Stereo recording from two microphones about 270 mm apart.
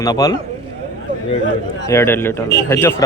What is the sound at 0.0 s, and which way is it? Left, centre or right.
Speech, centre.